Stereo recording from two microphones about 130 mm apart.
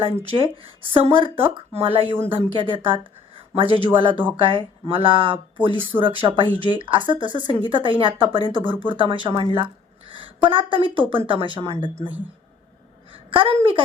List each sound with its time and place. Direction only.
0.3 s a woman's voice: 45° right (ahead or behind)
13.1 s a woman's voice: 45° right (ahead or behind)